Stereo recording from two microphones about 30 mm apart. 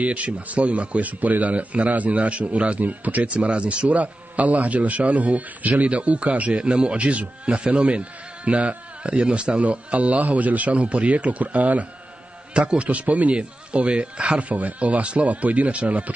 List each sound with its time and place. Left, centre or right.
0.0 s speech: right
2.8 s a man's voice: right
3.3 s speech: right
3.9 s a man's voice: right
5.9 s speech: right
7.4 s a man's voice: right
9.6 s speech: right
11.4 s a man's voice: right
12.5 s speech: right
13.3 s speech: right
14.5 s a man's voice: right